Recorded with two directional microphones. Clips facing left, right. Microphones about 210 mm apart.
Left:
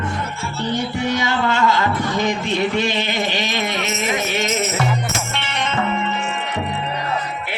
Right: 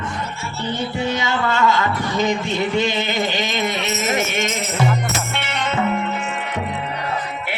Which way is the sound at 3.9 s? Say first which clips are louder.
Right 1 dB; 45° right (ahead or behind).